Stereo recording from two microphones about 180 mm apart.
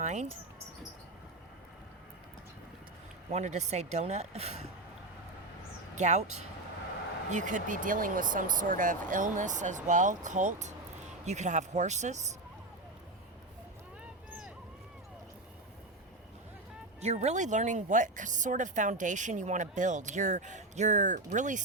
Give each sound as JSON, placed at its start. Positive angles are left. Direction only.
{"t": 0.0, "sound": "speech", "side_deg": -40}
{"t": 3.3, "sound": "speech", "side_deg": -40}
{"t": 6.0, "sound": "speech", "side_deg": -40}
{"t": 7.3, "sound": "speech", "side_deg": -45}
{"t": 17.0, "sound": "speech", "side_deg": -35}